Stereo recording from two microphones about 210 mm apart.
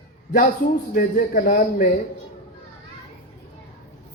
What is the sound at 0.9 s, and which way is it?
Speech, 45° left (ahead or behind).